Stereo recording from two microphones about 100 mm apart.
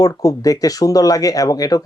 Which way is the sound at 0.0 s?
35° left (ahead or behind).